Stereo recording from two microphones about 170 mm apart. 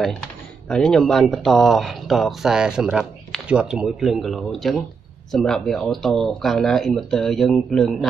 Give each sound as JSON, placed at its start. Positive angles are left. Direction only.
{"t": 0.0, "sound": "speech", "side_deg": 5}